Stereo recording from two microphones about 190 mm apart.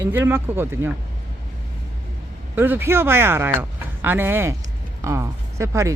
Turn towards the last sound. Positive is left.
turn(degrees=-15)  # may be behind; listen again after turning